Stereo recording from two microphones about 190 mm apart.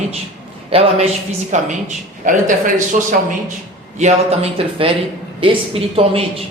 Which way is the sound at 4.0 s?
35° right (ahead or behind).